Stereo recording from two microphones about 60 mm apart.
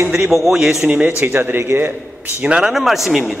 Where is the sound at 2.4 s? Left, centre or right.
Centre.